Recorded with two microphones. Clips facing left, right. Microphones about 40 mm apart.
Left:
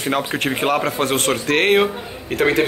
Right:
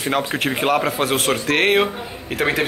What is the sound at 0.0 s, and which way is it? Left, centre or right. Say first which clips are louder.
A man's voice: even; centre.